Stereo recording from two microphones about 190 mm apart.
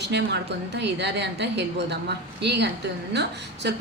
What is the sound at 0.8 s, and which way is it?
A woman's voice, 65° right (ahead or behind).